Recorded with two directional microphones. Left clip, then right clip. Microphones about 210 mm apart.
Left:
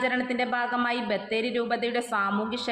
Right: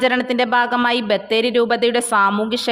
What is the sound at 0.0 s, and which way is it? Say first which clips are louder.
A woman's voice: right 9 dB; 55° right (ahead or behind).